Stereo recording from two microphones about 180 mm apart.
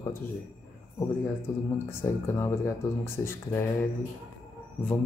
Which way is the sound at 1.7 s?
15° left (ahead or behind).